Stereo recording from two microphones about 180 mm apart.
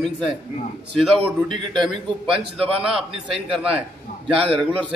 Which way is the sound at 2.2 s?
5° right (ahead or behind).